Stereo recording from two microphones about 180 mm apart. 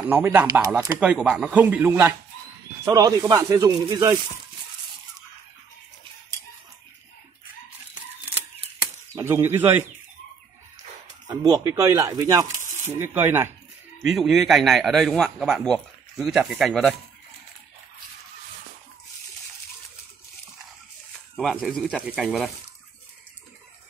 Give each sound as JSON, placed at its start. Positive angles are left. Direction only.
{"t": 0.0, "sound": "speech", "side_deg": -10}
{"t": 9.1, "sound": "speech", "side_deg": -10}
{"t": 11.2, "sound": "speech", "side_deg": -20}
{"t": 14.0, "sound": "a man's voice", "side_deg": 0}
{"t": 21.4, "sound": "a man's voice", "side_deg": 0}